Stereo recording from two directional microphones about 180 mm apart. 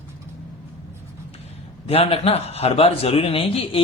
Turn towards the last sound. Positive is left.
turn(degrees=30)  # may be behind; listen again after turning